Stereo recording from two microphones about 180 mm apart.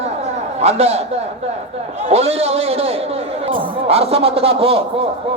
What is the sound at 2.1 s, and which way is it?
A man's voice, 35° right (ahead or behind).